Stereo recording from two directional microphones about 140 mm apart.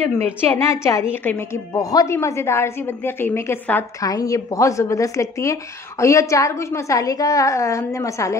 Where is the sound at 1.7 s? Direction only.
25° left (ahead or behind).